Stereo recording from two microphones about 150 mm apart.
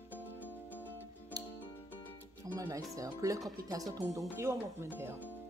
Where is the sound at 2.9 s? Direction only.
20° right (ahead or behind).